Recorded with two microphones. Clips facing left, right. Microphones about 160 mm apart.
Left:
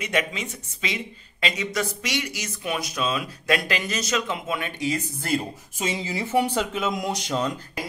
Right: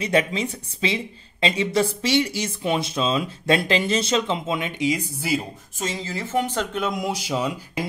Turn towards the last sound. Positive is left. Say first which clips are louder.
# right 1 dB
turn(degrees=-10)  # may be behind; listen again after turning